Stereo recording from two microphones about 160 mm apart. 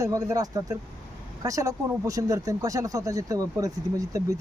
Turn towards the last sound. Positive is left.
turn(degrees=-20)  # may be behind; listen again after turning